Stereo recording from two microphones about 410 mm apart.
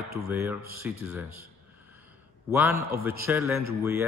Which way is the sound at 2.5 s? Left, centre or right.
Centre.